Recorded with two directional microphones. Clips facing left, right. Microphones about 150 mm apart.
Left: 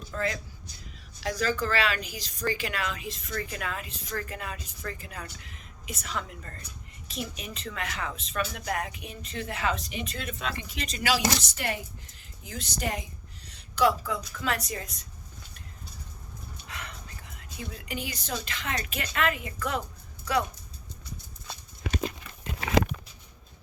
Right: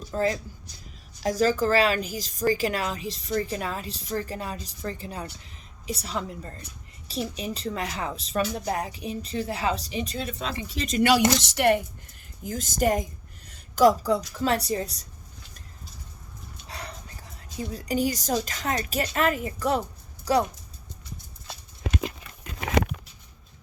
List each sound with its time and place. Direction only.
0.1 s a woman's voice: 35° right (ahead or behind)
11.0 s a woman's voice: 60° right (ahead or behind)
12.4 s a woman's voice: 45° right (ahead or behind)
16.6 s a woman's voice: 35° right (ahead or behind)